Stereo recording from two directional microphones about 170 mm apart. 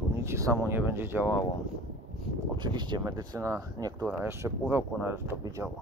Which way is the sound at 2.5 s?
25° right (ahead or behind).